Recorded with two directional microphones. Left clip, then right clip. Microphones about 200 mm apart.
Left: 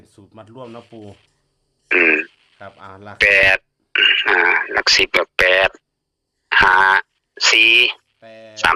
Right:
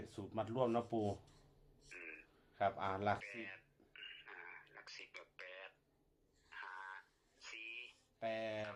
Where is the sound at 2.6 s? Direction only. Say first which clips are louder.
Left 1 dB; 35° left (ahead or behind).